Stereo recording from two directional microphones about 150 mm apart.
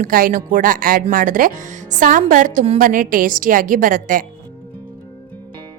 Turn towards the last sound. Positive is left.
turn(degrees=-65)  # may be behind; listen again after turning